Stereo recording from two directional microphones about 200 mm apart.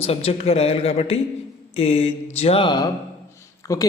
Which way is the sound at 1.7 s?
30° left (ahead or behind).